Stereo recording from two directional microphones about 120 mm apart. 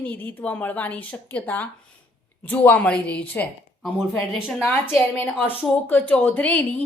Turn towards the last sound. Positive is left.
turn(degrees=15)  # may be behind; listen again after turning